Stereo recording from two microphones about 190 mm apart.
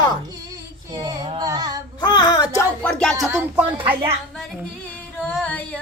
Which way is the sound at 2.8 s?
5° left (ahead or behind).